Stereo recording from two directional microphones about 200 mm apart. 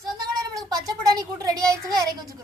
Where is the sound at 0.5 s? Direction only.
20° right (ahead or behind).